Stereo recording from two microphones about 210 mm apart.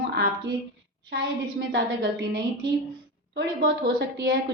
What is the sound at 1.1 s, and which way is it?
Speech, 50° right (ahead or behind).